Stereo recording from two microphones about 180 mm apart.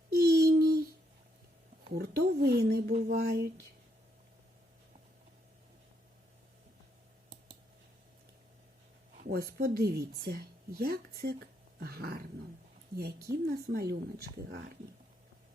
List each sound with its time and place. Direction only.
0.1 s a sound: 60° right (ahead or behind)
2.0 s speech: 60° right (ahead or behind)
9.2 s speech: 55° right (ahead or behind)